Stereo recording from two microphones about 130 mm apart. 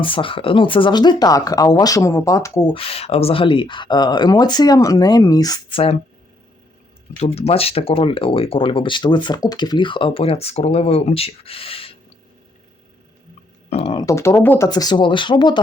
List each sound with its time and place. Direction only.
0.0 s speech: 40° left (ahead or behind)
2.7 s speech: 50° left (ahead or behind); by 5.5 s 25° left (ahead or behind)
5.7 s speech: 45° left (ahead or behind)
7.2 s speech: 50° left (ahead or behind)
13.7 s a sound: 50° left (ahead or behind)
13.9 s speech: 25° left (ahead or behind)
14.7 s speech: 30° left (ahead or behind)